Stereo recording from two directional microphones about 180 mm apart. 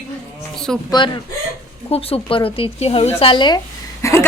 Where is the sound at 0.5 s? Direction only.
5° left (ahead or behind).